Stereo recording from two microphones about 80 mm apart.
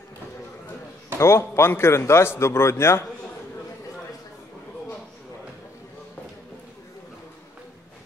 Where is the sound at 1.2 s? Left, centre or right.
Left.